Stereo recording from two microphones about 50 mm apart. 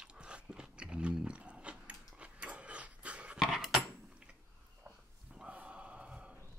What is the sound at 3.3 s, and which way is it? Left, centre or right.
Dog, centre.